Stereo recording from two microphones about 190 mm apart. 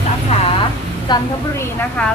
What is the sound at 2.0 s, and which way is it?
Speech, 5° left (ahead or behind).